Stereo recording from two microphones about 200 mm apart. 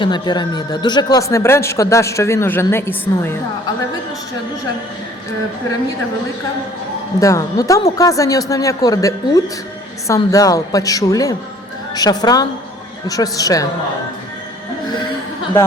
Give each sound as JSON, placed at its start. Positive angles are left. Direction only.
{"t": 0.0, "sound": "speech", "side_deg": 20}
{"t": 7.2, "sound": "a woman's voice", "side_deg": 15}